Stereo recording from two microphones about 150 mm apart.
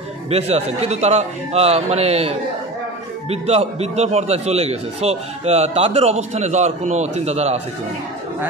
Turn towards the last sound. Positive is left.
turn(degrees=-45)  # may be behind; listen again after turning